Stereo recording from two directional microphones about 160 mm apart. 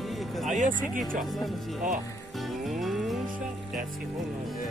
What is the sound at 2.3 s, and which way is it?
Music, centre (ahead or behind).